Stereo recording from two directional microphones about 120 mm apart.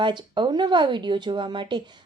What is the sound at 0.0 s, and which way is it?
Speech, 40° right (ahead or behind).